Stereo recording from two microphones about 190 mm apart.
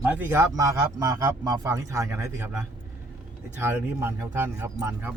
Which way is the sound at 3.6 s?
10° right (ahead or behind).